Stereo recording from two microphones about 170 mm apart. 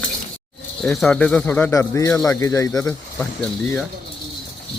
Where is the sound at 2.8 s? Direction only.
5° left (ahead or behind).